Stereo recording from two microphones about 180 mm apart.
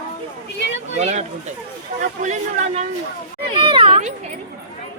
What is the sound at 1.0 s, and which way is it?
Speech, 40° right (ahead or behind).